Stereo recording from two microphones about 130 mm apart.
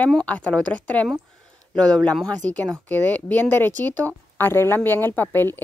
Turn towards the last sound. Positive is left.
turn(degrees=15)  # may be behind; listen again after turning